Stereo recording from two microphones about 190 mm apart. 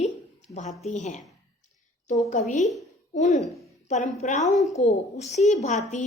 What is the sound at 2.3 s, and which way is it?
A woman's voice, 40° left (ahead or behind).